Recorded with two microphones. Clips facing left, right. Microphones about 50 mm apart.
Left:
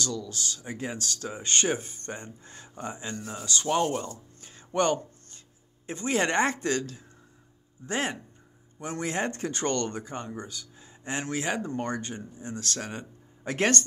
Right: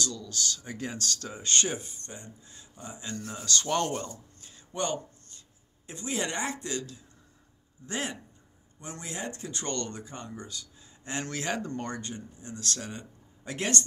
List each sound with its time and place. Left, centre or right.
0.0 s speech: left
3.2 s speech: centre
3.4 s speech: centre
4.4 s a sound: left
5.9 s speech: left